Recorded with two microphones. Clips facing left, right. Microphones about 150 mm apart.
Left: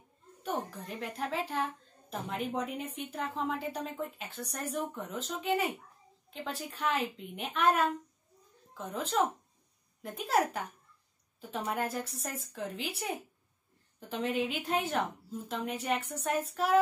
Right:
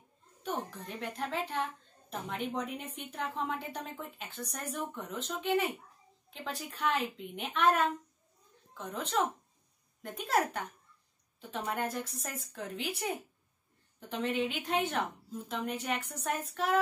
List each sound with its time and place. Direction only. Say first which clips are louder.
0.4 s a woman's voice: left 1 dB; centre (ahead or behind)